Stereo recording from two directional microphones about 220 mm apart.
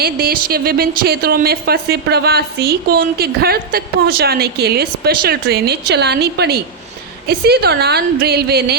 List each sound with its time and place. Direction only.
0.0 s a woman's voice: 45° right (ahead or behind)